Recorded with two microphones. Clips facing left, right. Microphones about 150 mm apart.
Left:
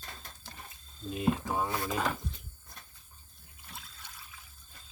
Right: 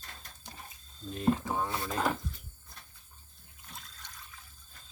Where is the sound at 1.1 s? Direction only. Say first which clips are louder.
Right 1 dB; 5° left (ahead or behind).